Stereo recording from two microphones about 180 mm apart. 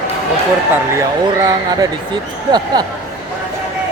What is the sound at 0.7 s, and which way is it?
Speech, 15° right (ahead or behind).